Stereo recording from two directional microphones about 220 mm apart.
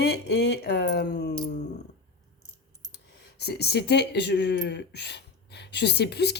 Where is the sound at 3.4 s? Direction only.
45° left (ahead or behind).